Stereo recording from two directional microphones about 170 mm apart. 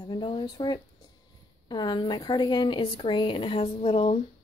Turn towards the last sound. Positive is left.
turn(degrees=30)  # may be behind; listen again after turning